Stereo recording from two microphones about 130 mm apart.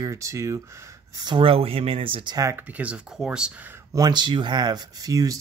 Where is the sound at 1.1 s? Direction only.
35° right (ahead or behind).